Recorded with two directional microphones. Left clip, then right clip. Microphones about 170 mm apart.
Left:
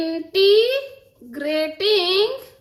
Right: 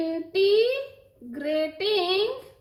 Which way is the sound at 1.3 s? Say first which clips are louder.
Left 4 dB; 30° left (ahead or behind).